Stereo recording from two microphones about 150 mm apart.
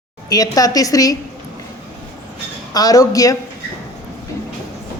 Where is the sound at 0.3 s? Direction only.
25° left (ahead or behind).